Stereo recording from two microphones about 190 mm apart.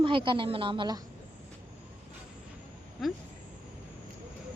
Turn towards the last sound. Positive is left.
turn(degrees=0)  # may be behind; listen again after turning